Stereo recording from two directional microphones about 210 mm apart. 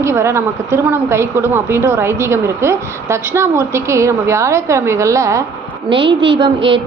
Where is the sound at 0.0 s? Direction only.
15° right (ahead or behind).